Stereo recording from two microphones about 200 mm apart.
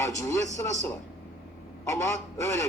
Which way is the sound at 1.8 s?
15° left (ahead or behind).